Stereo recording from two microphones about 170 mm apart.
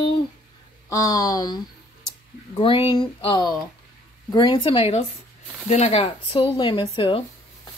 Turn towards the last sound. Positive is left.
turn(degrees=30)  # may be behind; listen again after turning